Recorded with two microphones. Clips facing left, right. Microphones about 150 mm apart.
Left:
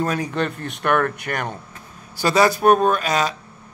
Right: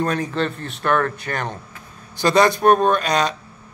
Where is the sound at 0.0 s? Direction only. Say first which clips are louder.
Right 1 dB; 10° left (ahead or behind).